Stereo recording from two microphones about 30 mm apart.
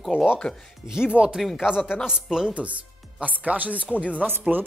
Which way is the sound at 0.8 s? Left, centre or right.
Centre.